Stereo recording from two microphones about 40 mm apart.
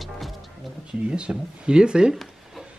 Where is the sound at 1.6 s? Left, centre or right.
Right.